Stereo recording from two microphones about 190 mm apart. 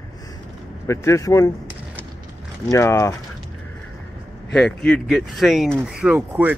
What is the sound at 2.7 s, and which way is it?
Speech, 15° left (ahead or behind).